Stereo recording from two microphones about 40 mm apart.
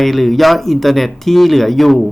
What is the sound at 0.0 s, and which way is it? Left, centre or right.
Speech, centre.